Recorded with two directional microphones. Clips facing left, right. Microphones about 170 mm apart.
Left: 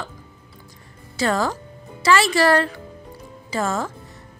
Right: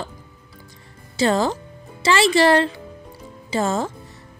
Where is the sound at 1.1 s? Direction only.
25° right (ahead or behind).